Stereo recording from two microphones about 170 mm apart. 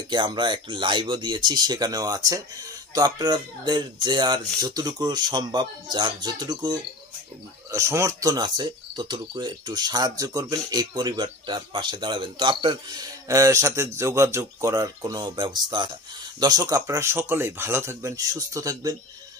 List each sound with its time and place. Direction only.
0.1 s speech: 25° right (ahead or behind)